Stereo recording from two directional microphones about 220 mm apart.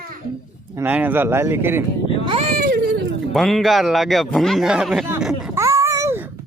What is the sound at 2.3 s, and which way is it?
Baby cry, 30° right (ahead or behind).